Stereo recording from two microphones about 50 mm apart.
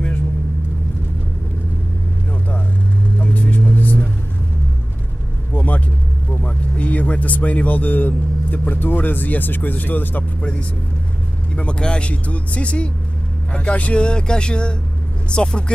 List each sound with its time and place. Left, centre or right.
3.2 s vehicle: left
5.5 s vehicle: left
6.3 s speech: left
11.5 s speech: centre